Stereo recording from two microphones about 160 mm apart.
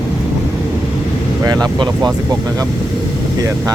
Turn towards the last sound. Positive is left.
turn(degrees=-20)  # may be behind; listen again after turning